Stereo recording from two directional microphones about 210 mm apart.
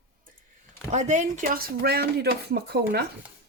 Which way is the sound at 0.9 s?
35° right (ahead or behind).